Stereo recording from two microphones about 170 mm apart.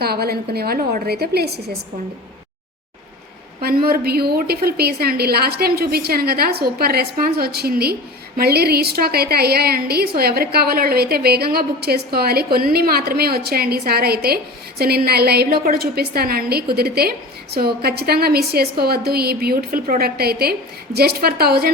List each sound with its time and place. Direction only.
0.0 s a woman's voice: 70° right (ahead or behind)
3.6 s a woman's voice: 65° right (ahead or behind)